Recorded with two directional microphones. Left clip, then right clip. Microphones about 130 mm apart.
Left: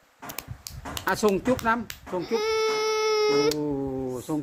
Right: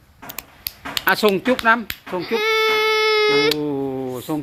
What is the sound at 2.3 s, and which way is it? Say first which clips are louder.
Baby cry: right 7 dB; 10° left (ahead or behind).